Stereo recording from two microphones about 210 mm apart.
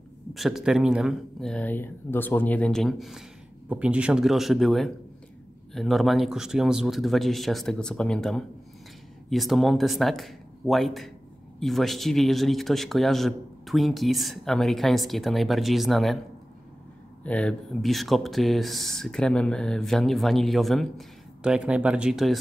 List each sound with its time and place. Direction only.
0.3 s speech: centre (ahead or behind)
17.2 s speech: 5° left (ahead or behind)